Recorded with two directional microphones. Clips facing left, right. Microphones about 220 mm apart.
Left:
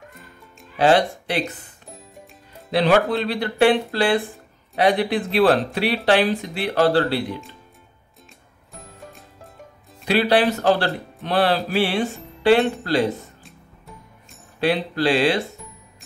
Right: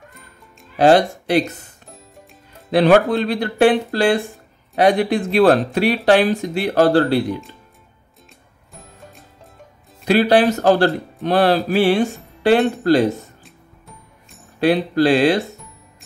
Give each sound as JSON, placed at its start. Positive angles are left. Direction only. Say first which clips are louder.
{"t": 0.1, "sound": "music", "louder": "left 1 dB", "side_deg": 0}
{"t": 0.7, "sound": "speech", "louder": "right 4 dB", "side_deg": -45}
{"t": 1.9, "sound": "music", "louder": "left 2 dB", "side_deg": 0}
{"t": 2.7, "sound": "speech", "louder": "right 4 dB", "side_deg": -50}
{"t": 8.7, "sound": "music", "louder": "left 1 dB", "side_deg": 0}
{"t": 10.0, "sound": "speech", "louder": "right 4 dB", "side_deg": -45}
{"t": 14.6, "sound": "speech", "louder": "right 5 dB", "side_deg": -45}